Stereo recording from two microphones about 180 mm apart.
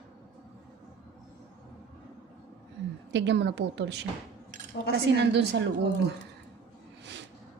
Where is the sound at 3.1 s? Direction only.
85° right.